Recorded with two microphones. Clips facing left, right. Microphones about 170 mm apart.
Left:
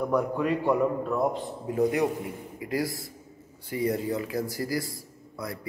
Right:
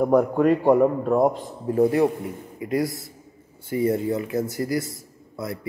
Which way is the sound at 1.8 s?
30° right (ahead or behind).